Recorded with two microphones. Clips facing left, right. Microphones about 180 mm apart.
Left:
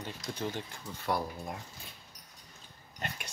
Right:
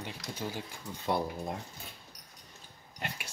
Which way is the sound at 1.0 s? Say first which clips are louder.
Right 1 dB; 20° right (ahead or behind).